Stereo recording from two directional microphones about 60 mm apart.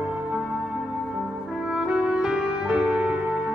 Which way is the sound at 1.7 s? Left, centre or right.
Centre.